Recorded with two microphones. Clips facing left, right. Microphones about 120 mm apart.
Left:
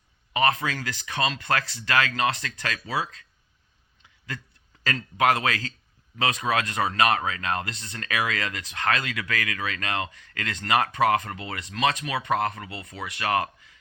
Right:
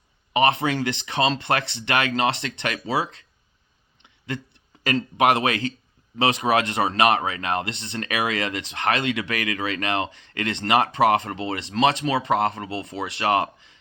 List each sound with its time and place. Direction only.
0.3 s speech: 25° right (ahead or behind)
4.3 s speech: 25° right (ahead or behind)